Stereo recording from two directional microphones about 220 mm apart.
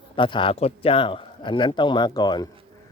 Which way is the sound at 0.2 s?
20° left (ahead or behind).